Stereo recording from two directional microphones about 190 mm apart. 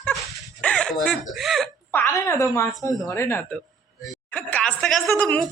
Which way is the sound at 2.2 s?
15° left (ahead or behind).